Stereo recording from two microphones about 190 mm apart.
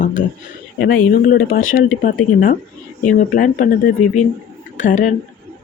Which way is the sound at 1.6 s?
90° left.